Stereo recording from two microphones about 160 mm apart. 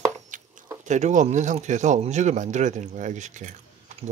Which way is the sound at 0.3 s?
55° right (ahead or behind).